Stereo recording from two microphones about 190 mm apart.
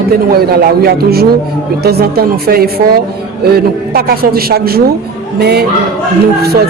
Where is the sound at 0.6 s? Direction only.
55° right (ahead or behind).